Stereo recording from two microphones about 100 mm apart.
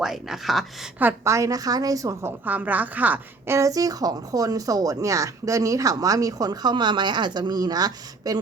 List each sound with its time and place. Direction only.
0.0 s speech: 5° right (ahead or behind)
1.2 s a woman's voice: 30° right (ahead or behind)
2.4 s a woman's voice: 15° right (ahead or behind); by 8.4 s 40° right (ahead or behind)